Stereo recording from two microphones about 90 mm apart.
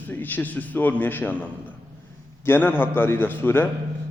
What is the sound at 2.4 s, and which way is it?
A man's voice, 25° left (ahead or behind).